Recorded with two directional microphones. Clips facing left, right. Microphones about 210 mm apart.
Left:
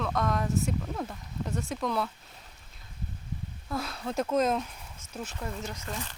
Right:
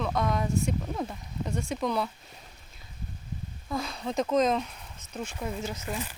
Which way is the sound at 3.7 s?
5° left (ahead or behind).